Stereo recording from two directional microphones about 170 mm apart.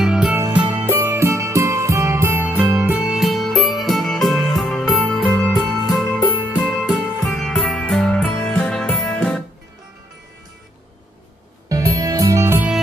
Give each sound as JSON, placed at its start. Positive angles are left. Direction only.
{"t": 0.0, "sound": "music", "side_deg": -5}
{"t": 11.7, "sound": "music", "side_deg": -20}